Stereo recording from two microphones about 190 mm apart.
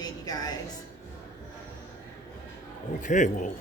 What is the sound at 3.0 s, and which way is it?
Speech, 40° left (ahead or behind).